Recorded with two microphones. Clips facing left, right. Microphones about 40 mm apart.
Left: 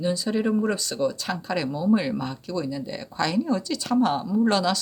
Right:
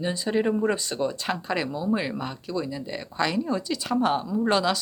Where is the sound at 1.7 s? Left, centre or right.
Centre.